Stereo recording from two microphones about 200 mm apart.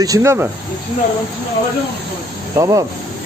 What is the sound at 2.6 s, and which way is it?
Speech, 15° right (ahead or behind).